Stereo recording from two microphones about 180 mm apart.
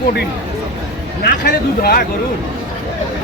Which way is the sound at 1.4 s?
60° left (ahead or behind).